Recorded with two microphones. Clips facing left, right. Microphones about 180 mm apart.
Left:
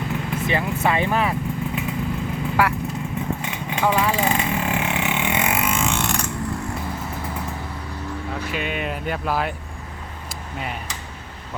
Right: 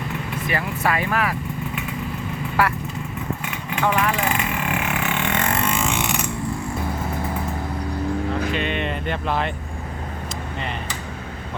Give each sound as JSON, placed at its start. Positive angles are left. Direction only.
{"t": 0.4, "sound": "speech", "side_deg": 20}
{"t": 3.4, "sound": "vehicle", "side_deg": 25}
{"t": 5.0, "sound": "vehicle", "side_deg": 15}
{"t": 8.5, "sound": "speech", "side_deg": 5}